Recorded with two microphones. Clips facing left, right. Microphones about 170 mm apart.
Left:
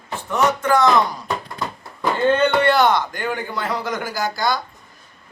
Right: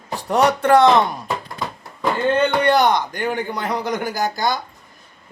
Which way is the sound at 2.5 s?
15° right (ahead or behind).